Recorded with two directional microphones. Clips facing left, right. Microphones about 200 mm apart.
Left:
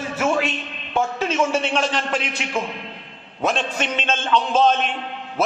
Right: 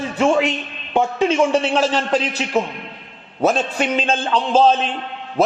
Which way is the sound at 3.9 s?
35° right (ahead or behind).